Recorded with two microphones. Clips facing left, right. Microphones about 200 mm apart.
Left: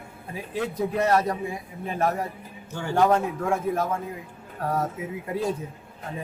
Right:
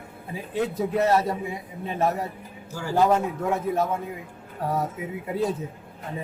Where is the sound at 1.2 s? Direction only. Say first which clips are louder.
Even; 25° right (ahead or behind).